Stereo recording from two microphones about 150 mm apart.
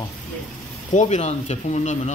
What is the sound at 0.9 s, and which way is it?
Speech, 50° left (ahead or behind).